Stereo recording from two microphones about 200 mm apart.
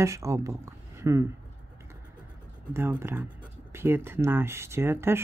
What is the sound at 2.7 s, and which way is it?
Speech, 10° right (ahead or behind).